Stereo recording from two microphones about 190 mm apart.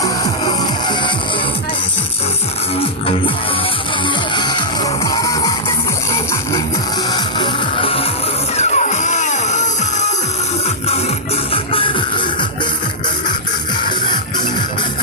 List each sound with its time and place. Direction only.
0.0 s music: 25° left (ahead or behind)
4.4 s music: 25° left (ahead or behind)
7.1 s music: 25° left (ahead or behind)
11.5 s music: 30° left (ahead or behind)